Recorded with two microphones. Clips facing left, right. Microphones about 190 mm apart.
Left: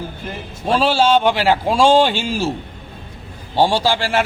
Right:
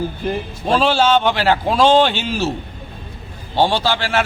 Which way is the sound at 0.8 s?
5° left (ahead or behind).